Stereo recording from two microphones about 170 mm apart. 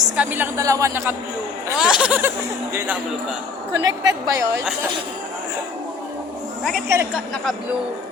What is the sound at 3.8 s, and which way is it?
Speech, 20° right (ahead or behind).